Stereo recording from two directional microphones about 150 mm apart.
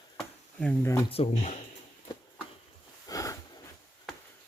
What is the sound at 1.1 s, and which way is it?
Speech, 45° left (ahead or behind).